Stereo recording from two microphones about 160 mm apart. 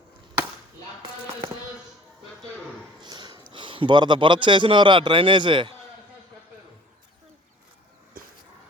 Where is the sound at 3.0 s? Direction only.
30° right (ahead or behind).